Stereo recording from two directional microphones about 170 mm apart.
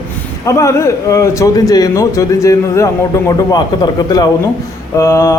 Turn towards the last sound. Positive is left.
turn(degrees=15)  # may be behind; listen again after turning